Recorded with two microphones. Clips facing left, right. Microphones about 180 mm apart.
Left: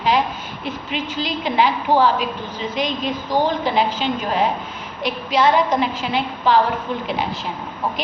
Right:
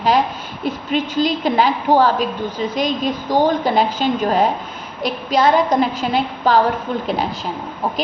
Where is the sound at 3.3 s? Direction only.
45° right (ahead or behind).